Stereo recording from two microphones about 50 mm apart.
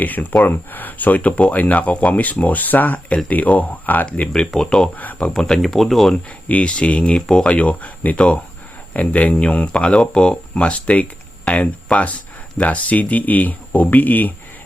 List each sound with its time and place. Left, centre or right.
0.0 s speech: left
4.4 s speech: centre
4.9 s speech: left
5.3 s speech: centre
6.5 s speech: left
7.5 s speech: left